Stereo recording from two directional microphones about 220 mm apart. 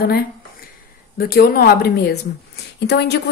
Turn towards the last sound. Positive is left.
turn(degrees=50)  # may be behind; listen again after turning